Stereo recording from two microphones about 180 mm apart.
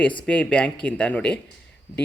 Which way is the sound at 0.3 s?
5° left (ahead or behind).